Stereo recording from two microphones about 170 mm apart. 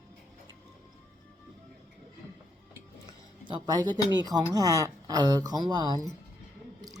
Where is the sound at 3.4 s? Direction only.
25° right (ahead or behind).